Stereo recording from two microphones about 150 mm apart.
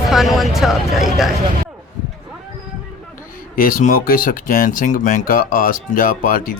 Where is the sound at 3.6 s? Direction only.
65° left (ahead or behind).